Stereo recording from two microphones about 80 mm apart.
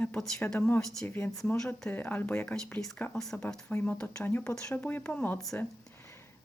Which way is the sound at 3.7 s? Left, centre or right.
Centre.